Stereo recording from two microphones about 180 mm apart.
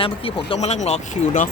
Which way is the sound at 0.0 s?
30° left (ahead or behind).